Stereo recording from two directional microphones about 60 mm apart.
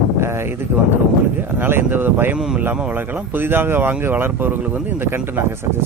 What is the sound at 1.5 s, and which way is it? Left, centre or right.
Speech, right.